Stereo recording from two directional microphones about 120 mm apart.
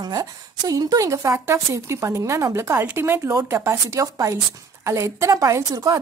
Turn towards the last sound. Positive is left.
turn(degrees=-30)  # may be behind; listen again after turning